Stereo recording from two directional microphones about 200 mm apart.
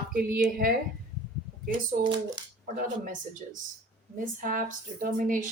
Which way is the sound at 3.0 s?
40° right (ahead or behind).